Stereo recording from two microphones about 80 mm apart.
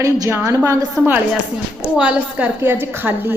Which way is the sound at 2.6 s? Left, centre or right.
Right.